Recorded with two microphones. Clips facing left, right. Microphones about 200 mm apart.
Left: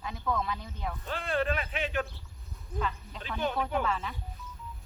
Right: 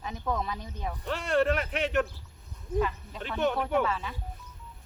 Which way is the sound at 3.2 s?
70° right (ahead or behind).